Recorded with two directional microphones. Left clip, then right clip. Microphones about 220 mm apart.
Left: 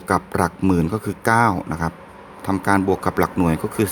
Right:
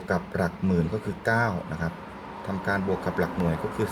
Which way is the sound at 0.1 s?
55° left (ahead or behind).